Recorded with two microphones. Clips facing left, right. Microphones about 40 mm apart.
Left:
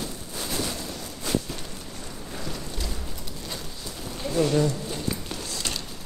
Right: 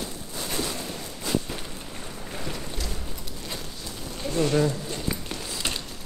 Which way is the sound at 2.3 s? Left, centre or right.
Centre.